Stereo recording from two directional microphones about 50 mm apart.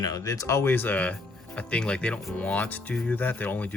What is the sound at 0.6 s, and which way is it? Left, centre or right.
Speech, left.